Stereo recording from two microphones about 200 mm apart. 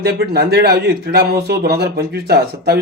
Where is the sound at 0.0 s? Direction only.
50° right (ahead or behind).